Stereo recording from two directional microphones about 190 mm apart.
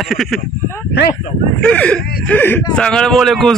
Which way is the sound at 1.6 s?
5° left (ahead or behind).